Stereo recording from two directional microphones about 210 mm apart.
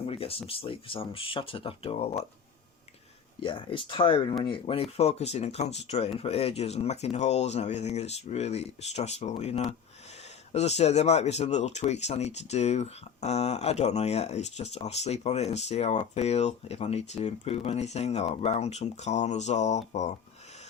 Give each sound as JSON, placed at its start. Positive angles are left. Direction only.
{"t": 0.0, "sound": "speech", "side_deg": 25}
{"t": 3.4, "sound": "speech", "side_deg": 25}